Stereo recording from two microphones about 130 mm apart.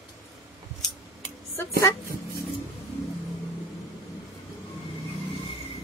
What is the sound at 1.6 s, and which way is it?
Speech, 20° left (ahead or behind).